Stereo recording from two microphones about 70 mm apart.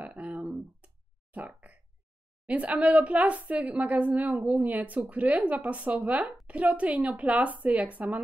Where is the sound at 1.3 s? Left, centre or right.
Right.